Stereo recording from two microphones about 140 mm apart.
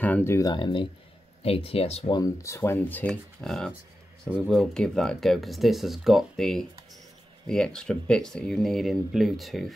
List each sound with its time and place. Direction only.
0.0 s speech: 15° left (ahead or behind); by 2.1 s 45° left (ahead or behind)
2.1 s speech: 20° left (ahead or behind); by 9.7 s centre (ahead or behind)